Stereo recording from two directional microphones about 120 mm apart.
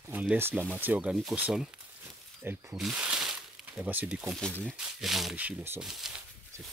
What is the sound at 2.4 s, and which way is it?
Speech, 15° right (ahead or behind).